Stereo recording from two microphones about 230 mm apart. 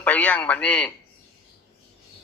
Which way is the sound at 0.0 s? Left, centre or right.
Centre.